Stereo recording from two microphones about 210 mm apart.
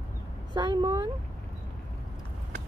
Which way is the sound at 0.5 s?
20° right (ahead or behind).